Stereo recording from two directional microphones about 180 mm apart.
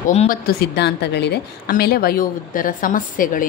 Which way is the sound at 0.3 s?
60° left (ahead or behind).